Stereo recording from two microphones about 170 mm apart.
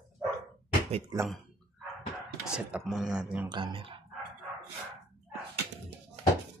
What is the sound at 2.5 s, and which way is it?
Speech, 5° right (ahead or behind).